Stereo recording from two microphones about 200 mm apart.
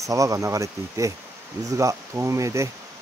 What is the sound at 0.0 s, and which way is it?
Speech, 15° right (ahead or behind).